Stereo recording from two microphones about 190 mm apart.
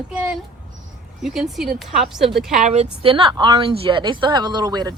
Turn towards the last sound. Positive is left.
turn(degrees=-20)  # may be behind; listen again after turning